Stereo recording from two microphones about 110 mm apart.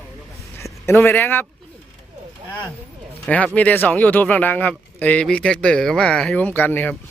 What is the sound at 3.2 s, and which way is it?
Speech, 10° left (ahead or behind).